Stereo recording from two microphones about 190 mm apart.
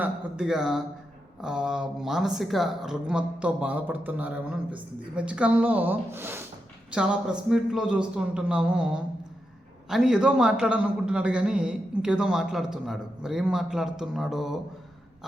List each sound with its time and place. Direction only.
0.0 s a man's voice: 5° right (ahead or behind)